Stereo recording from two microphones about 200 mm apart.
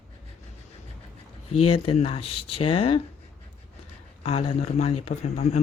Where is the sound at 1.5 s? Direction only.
30° left (ahead or behind).